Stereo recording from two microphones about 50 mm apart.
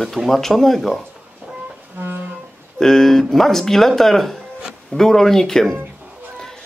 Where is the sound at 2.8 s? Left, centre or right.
Centre.